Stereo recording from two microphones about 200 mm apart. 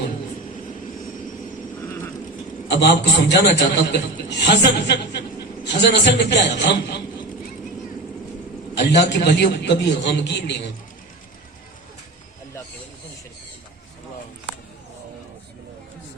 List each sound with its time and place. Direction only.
2.6 s a man's voice: 55° left (ahead or behind)
8.7 s a man's voice: 60° left (ahead or behind)